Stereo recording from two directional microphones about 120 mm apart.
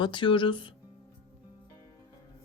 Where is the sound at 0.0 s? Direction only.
40° left (ahead or behind).